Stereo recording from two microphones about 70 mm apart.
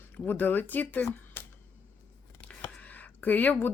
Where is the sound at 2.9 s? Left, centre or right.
Left.